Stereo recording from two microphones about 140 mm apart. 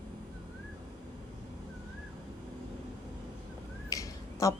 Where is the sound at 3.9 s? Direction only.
25° left (ahead or behind).